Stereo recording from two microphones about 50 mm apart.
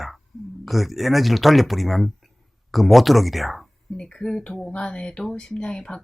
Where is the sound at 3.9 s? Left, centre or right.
Centre.